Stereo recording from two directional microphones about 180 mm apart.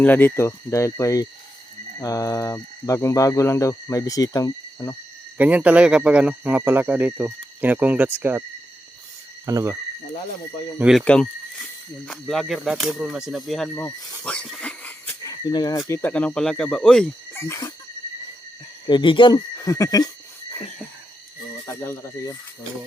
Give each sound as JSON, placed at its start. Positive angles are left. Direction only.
{"t": 0.0, "sound": "speech", "side_deg": 10}
{"t": 5.4, "sound": "speech", "side_deg": -10}
{"t": 9.5, "sound": "speech", "side_deg": -20}
{"t": 10.8, "sound": "speech", "side_deg": -5}
{"t": 13.8, "sound": "pig", "side_deg": 5}
{"t": 15.9, "sound": "speech", "side_deg": 10}
{"t": 17.4, "sound": "speech", "side_deg": 15}
{"t": 18.9, "sound": "speech", "side_deg": 25}
{"t": 21.7, "sound": "speech", "side_deg": 15}